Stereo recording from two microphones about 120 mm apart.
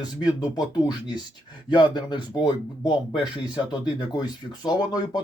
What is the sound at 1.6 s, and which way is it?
Speech, 40° left (ahead or behind).